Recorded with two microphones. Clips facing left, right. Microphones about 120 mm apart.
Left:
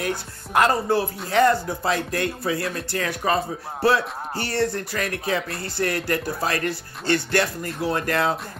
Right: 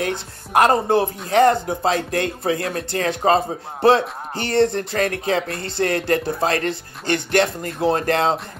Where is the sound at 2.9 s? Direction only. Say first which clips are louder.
Right 6 dB; 25° right (ahead or behind).